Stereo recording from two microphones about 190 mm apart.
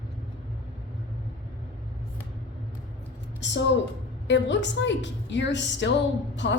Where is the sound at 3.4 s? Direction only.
70° left (ahead or behind).